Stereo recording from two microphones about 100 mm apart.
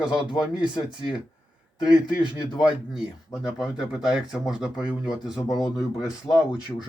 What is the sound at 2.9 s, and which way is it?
Speech, 5° right (ahead or behind).